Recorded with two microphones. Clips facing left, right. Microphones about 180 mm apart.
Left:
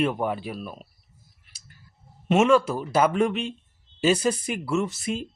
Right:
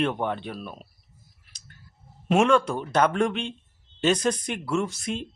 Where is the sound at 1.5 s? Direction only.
10° left (ahead or behind).